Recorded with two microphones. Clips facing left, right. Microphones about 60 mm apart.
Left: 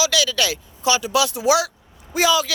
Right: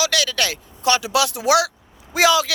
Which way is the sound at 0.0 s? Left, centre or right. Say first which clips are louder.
Left 1 dB; right.